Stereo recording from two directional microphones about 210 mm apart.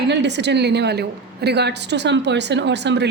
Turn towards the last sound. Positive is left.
turn(degrees=-55)  # may be behind; listen again after turning